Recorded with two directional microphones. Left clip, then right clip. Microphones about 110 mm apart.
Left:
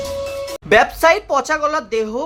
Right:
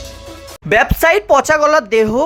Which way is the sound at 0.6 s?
40° right (ahead or behind).